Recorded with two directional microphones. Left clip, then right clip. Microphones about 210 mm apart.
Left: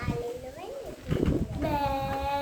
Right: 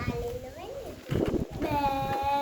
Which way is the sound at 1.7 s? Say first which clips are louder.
Right 2 dB; 10° right (ahead or behind).